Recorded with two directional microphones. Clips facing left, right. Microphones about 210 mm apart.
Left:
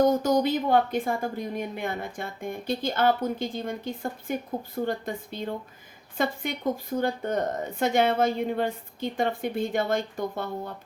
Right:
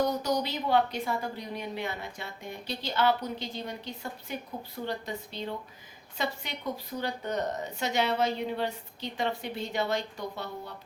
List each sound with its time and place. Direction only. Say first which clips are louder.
0.0 s a woman's voice: left 7 dB; 50° left (ahead or behind)